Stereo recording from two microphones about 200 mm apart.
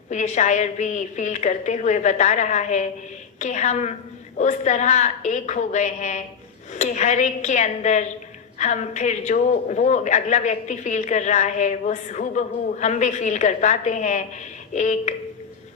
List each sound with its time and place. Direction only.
0.1 s a woman's voice: 35° left (ahead or behind)